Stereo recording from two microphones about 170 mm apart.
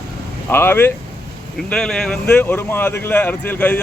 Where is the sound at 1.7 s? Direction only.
5° left (ahead or behind).